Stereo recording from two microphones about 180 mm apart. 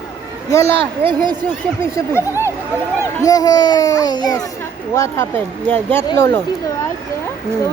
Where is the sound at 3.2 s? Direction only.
20° left (ahead or behind).